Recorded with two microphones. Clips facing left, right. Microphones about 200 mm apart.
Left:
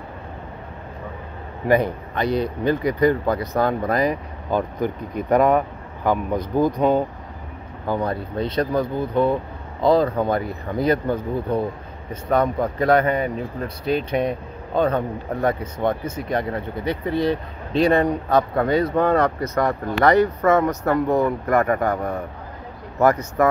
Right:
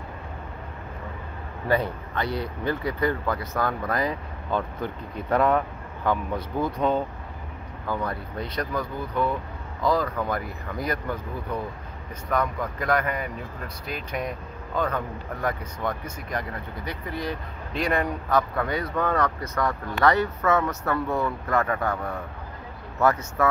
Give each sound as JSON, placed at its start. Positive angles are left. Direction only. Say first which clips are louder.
{"t": 1.7, "sound": "speech", "louder": "left 6 dB", "side_deg": 20}
{"t": 6.6, "sound": "speech", "louder": "left 6 dB", "side_deg": 10}
{"t": 7.8, "sound": "speech", "louder": "left 6 dB", "side_deg": 25}